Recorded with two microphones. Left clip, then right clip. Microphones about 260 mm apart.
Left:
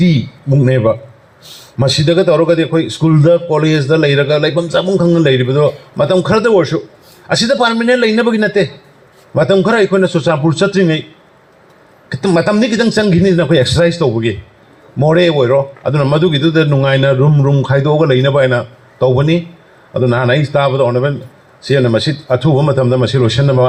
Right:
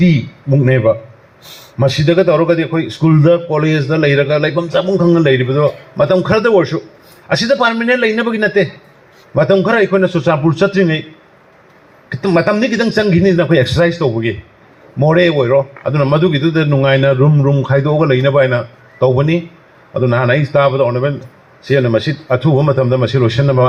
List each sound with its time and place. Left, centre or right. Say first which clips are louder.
0.0 s a man's voice: even; left
12.0 s a man's voice: even; left